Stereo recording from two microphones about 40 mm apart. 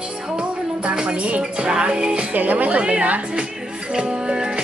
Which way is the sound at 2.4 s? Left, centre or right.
Right.